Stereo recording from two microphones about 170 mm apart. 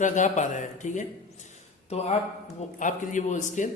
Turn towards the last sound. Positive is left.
turn(degrees=45)  # may be behind; listen again after turning